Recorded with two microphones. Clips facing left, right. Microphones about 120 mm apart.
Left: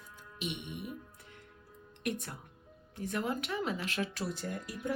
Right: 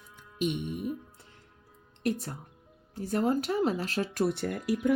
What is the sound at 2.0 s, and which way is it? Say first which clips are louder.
Speech: right 6 dB; 35° right (ahead or behind).